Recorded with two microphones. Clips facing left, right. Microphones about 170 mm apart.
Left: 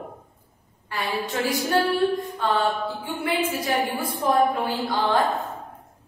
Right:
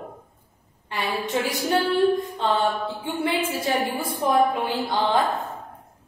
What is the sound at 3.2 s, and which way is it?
Speech, 25° right (ahead or behind).